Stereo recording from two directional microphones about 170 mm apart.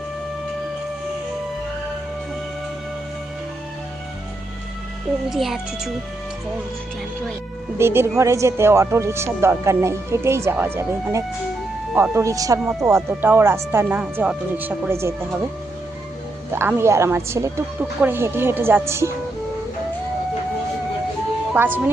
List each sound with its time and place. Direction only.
5.3 s speech: centre (ahead or behind)
7.8 s speech: 15° right (ahead or behind)
16.5 s speech: 15° right (ahead or behind)
21.5 s speech: 10° right (ahead or behind)